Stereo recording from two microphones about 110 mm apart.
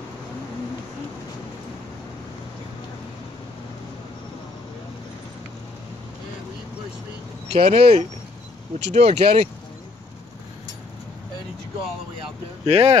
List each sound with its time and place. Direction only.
7.5 s speech: 60° right (ahead or behind)
8.7 s speech: 90° right; by 9.5 s 65° right (ahead or behind)
12.6 s speech: 70° right (ahead or behind)